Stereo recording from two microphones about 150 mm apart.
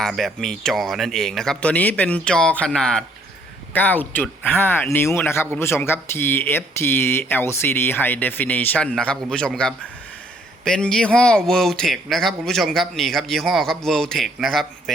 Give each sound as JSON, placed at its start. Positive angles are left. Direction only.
{"t": 0.0, "sound": "speech", "side_deg": 0}